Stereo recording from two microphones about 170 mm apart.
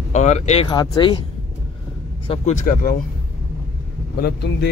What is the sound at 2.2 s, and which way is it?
Speech, 45° left (ahead or behind).